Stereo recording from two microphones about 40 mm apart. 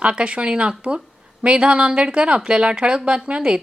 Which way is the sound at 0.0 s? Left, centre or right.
Right.